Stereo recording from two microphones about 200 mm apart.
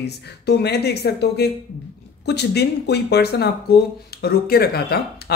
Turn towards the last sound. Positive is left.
turn(degrees=50)  # may be behind; listen again after turning